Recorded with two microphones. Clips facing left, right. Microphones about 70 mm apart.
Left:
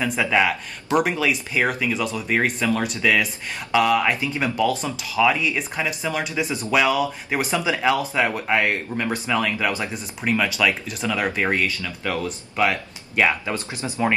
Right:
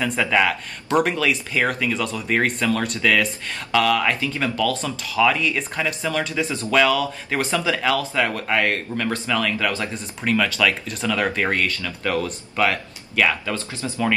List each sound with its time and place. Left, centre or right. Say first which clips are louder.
0.0 s speech: even; centre
5.1 s speech: even; centre
13.1 s speech: even; left